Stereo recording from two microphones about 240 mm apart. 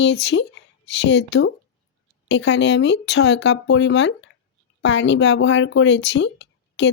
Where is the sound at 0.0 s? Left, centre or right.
Left.